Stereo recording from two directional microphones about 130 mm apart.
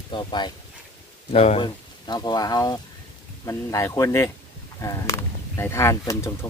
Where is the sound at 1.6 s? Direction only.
35° left (ahead or behind).